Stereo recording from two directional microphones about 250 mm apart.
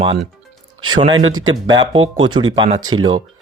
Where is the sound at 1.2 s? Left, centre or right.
Right.